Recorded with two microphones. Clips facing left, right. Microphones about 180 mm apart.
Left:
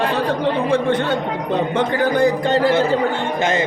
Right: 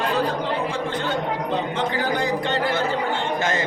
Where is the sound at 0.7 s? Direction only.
65° left (ahead or behind).